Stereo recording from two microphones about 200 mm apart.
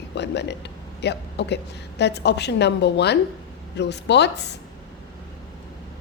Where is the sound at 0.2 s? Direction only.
60° left (ahead or behind).